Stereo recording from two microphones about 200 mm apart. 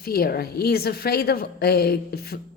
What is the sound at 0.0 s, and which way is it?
A woman's voice, 50° left (ahead or behind).